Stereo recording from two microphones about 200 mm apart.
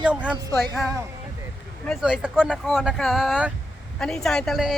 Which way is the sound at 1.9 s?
Centre (ahead or behind).